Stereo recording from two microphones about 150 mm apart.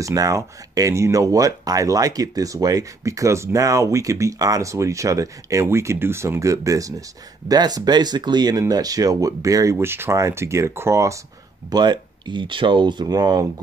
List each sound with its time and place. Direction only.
0.0 s speech: 20° right (ahead or behind)
11.7 s speech: 30° right (ahead or behind)